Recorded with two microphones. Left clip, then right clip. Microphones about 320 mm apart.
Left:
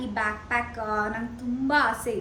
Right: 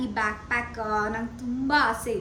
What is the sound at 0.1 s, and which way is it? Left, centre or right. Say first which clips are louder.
A woman's voice: left 2 dB; centre.